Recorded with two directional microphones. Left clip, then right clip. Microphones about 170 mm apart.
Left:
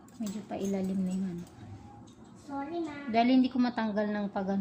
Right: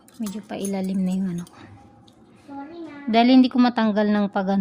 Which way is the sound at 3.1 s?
80° right.